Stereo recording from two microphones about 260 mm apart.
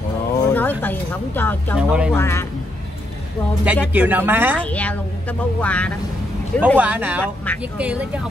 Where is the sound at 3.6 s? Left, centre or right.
Centre.